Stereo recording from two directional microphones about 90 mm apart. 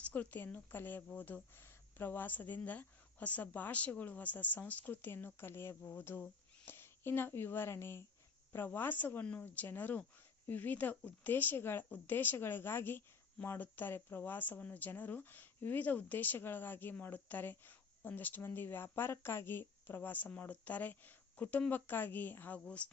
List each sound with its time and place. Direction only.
0.0 s speech: 15° left (ahead or behind)